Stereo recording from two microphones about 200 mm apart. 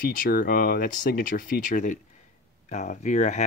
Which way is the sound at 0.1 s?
45° left (ahead or behind).